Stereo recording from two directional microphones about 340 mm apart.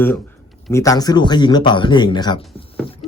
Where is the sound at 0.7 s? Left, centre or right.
Centre.